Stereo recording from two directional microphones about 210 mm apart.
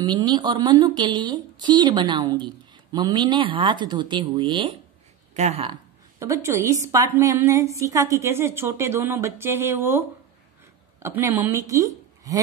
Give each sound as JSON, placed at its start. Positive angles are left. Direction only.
{"t": 0.0, "sound": "a woman's voice", "side_deg": -20}